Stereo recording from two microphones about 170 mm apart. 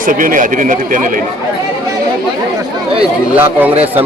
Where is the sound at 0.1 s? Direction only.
55° right (ahead or behind).